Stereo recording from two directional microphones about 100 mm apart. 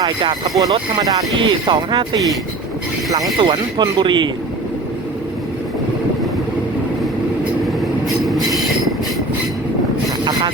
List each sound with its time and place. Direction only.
0.6 s speech: 45° right (ahead or behind)
3.3 s speech: 60° right (ahead or behind)
8.0 s train: centre (ahead or behind)